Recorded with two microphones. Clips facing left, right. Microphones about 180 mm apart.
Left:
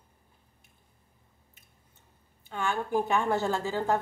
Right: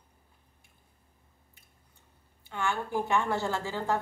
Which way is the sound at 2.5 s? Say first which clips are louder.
Left 2 dB; 15° left (ahead or behind).